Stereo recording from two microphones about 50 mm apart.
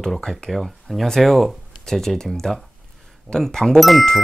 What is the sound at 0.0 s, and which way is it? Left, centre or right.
Speech, centre.